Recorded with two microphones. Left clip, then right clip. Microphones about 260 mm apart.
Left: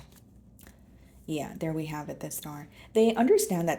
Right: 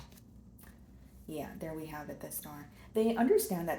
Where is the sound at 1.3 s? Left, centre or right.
Left.